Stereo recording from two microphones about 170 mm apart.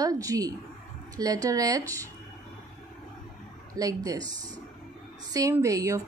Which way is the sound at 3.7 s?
20° right (ahead or behind).